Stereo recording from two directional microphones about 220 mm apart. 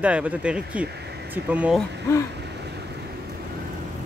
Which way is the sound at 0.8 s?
50° right (ahead or behind).